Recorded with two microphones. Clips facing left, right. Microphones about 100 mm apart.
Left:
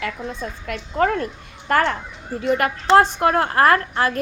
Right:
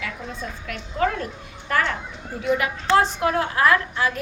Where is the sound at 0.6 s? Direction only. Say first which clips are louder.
Left 4 dB; 45° left (ahead or behind).